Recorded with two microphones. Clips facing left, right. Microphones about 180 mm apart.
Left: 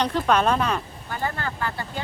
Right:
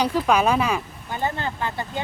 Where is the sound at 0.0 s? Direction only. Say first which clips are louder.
Right 1 dB; 10° right (ahead or behind).